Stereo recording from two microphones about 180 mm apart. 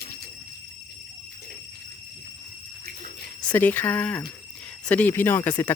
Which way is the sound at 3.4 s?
10° left (ahead or behind).